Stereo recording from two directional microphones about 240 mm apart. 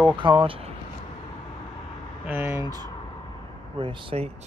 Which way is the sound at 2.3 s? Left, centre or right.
Centre.